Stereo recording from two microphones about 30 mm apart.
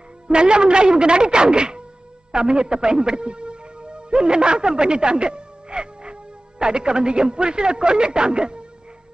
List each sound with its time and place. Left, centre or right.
0.3 s speech: right